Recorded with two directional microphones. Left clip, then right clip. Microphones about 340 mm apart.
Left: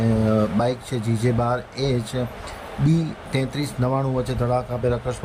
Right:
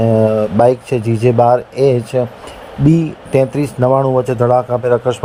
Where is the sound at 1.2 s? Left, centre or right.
Right.